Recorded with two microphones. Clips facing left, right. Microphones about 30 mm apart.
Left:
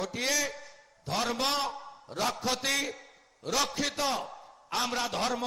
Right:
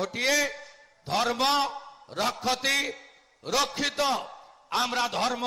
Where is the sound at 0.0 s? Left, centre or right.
Centre.